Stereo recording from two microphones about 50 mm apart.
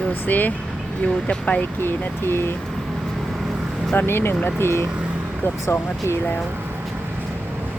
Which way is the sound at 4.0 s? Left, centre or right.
Left.